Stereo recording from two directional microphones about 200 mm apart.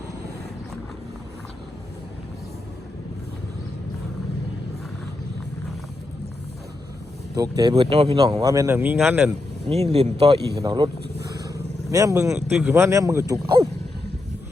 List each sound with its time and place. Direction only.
7.3 s speech: 20° right (ahead or behind)
8.2 s speech: 15° right (ahead or behind)
9.6 s speech: 30° right (ahead or behind)
11.4 s vehicle: 15° right (ahead or behind)
12.5 s speech: 10° right (ahead or behind)